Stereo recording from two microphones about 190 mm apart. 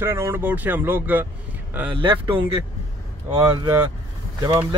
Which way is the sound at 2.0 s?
25° right (ahead or behind).